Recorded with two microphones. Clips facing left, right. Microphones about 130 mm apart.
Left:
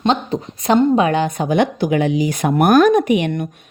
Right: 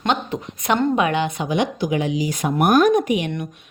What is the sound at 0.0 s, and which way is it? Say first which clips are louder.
A woman's voice: left 4 dB; 35° left (ahead or behind).